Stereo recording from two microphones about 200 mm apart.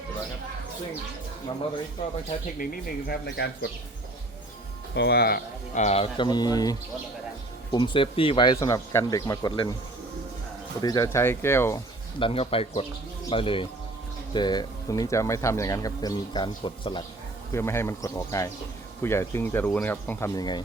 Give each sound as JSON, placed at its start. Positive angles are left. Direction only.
{"t": 3.1, "sound": "speech", "side_deg": 55}
{"t": 4.9, "sound": "speech", "side_deg": 55}
{"t": 5.7, "sound": "speech", "side_deg": 35}
{"t": 10.8, "sound": "speech", "side_deg": 20}
{"t": 12.2, "sound": "speech", "side_deg": 30}
{"t": 17.5, "sound": "speech", "side_deg": 15}